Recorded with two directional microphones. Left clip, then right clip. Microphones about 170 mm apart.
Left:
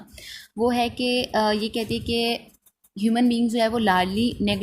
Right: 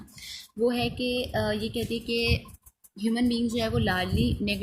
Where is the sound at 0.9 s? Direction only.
65° left (ahead or behind).